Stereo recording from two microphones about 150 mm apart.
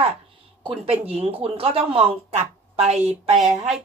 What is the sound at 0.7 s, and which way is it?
Speech, 40° right (ahead or behind).